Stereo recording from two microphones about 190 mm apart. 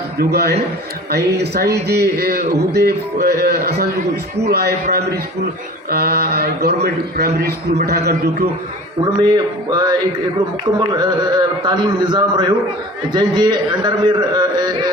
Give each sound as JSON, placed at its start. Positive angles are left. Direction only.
{"t": 0.2, "sound": "a man's voice", "side_deg": -55}
{"t": 9.6, "sound": "a man's voice", "side_deg": -20}